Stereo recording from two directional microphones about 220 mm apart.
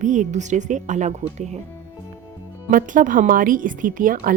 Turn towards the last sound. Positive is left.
turn(degrees=-40)  # may be behind; listen again after turning